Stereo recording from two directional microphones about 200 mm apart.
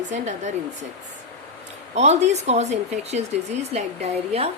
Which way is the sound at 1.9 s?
35° right (ahead or behind).